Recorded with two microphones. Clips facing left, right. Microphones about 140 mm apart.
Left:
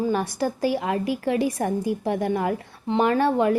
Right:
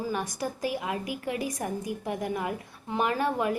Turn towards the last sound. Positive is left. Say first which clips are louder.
# left 7 dB
turn(degrees=30)  # may be behind; listen again after turning